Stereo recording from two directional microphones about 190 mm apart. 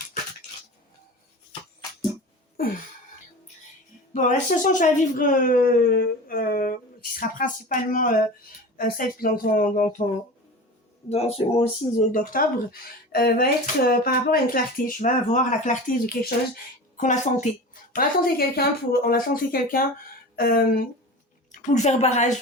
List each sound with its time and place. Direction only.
2.6 s a sound: 45° left (ahead or behind)
4.1 s speech: 40° left (ahead or behind)
11.1 s speech: 30° left (ahead or behind)
12.1 s speech: 50° left (ahead or behind)
17.9 s speech: 50° left (ahead or behind)
21.5 s a woman's voice: 40° left (ahead or behind)